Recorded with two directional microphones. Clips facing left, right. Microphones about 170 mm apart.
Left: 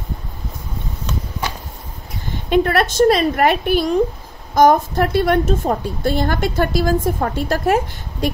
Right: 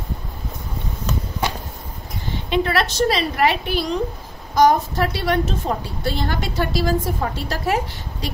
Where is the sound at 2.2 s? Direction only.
50° left (ahead or behind).